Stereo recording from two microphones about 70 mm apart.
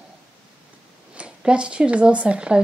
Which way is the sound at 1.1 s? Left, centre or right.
Centre.